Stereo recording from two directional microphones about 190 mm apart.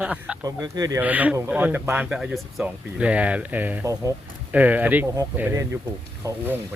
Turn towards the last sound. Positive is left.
turn(degrees=-10)  # may be behind; listen again after turning